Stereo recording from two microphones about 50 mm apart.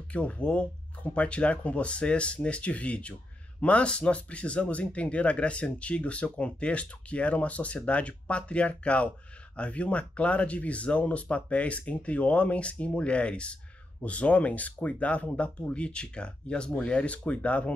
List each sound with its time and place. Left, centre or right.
0.1 s speech: left